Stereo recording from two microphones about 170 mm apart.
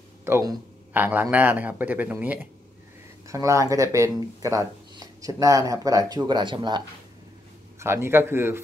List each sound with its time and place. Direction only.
0.2 s a man's voice: 15° right (ahead or behind)
7.8 s a man's voice: 15° right (ahead or behind)